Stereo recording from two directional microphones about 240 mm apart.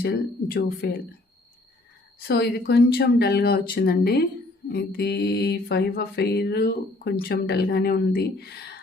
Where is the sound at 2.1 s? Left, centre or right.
Left.